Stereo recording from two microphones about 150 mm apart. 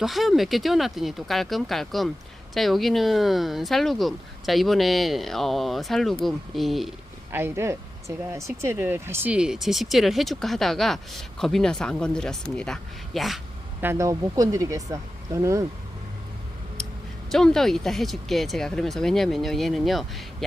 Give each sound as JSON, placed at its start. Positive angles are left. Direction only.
{"t": 0.0, "sound": "speech", "side_deg": 0}
{"t": 7.3, "sound": "speech", "side_deg": -15}
{"t": 13.8, "sound": "speech", "side_deg": -20}
{"t": 17.3, "sound": "speech", "side_deg": 0}